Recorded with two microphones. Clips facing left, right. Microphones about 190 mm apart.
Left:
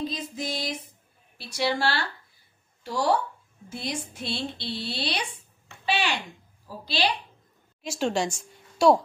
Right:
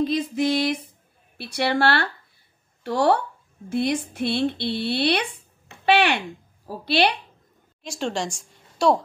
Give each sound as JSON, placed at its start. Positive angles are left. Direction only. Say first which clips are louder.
{"t": 0.0, "sound": "a woman's voice", "louder": "right 10 dB", "side_deg": -65}
{"t": 7.8, "sound": "a woman's voice", "louder": "left 1 dB", "side_deg": 5}